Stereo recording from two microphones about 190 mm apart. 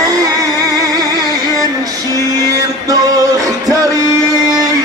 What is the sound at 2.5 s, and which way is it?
Music, 20° right (ahead or behind).